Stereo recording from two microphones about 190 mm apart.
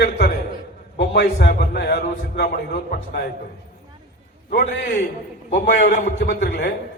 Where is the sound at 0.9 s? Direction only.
70° left (ahead or behind).